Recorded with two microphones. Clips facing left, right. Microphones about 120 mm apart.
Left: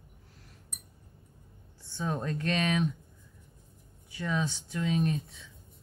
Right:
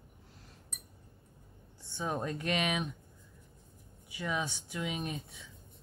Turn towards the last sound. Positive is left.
turn(degrees=-20)  # may be behind; listen again after turning